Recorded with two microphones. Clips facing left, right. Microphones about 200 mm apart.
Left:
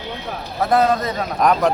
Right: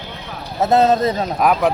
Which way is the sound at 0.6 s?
25° right (ahead or behind).